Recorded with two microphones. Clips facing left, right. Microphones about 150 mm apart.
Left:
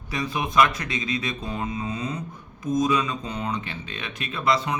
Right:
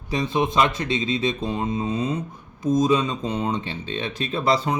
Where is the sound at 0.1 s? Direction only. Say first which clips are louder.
Right 5 dB; 25° right (ahead or behind).